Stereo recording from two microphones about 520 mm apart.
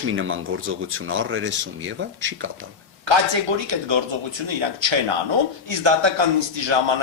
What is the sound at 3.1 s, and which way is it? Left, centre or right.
A man's voice, right.